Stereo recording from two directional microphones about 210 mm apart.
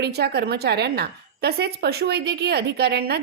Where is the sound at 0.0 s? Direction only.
50° right (ahead or behind).